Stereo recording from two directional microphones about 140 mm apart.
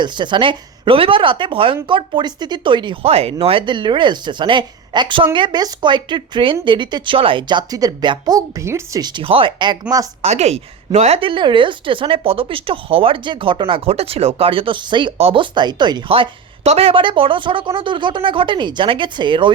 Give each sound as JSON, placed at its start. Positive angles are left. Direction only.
{"t": 0.0, "sound": "speech", "side_deg": -35}
{"t": 10.2, "sound": "speech", "side_deg": -50}